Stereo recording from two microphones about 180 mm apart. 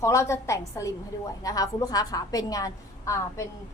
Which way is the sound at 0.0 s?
15° left (ahead or behind).